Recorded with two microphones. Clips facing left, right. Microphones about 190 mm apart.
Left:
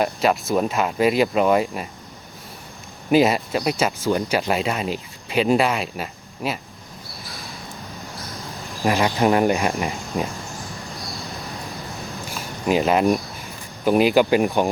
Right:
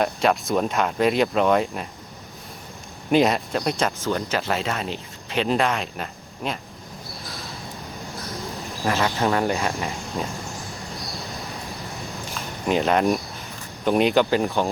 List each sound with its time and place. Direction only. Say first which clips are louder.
0.0 s speech: left 1 dB; centre (ahead or behind)
3.1 s speech: left 2 dB; 5° left (ahead or behind)
8.8 s speech: left 4 dB; 15° left (ahead or behind)
12.6 s speech: left 2 dB; 5° left (ahead or behind)